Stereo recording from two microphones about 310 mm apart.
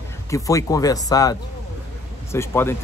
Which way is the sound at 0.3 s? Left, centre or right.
Centre.